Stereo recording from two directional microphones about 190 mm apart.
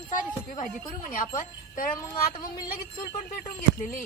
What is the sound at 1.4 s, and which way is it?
Speech, 45° left (ahead or behind).